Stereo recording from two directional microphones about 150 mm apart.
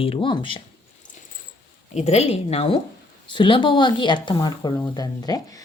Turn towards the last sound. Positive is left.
turn(degrees=25)  # may be behind; listen again after turning